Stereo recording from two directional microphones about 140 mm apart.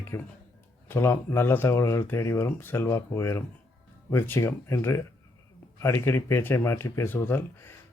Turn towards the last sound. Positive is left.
turn(degrees=15)  # may be behind; listen again after turning